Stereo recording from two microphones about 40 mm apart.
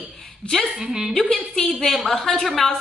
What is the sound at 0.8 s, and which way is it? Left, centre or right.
Speech, centre.